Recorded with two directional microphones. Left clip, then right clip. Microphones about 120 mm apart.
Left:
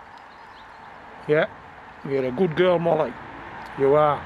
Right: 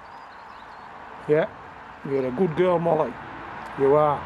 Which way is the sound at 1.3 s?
20° left (ahead or behind).